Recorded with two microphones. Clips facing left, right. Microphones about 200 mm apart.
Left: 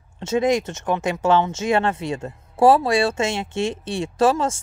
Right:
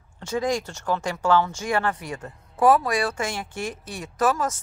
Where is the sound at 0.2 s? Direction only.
25° left (ahead or behind).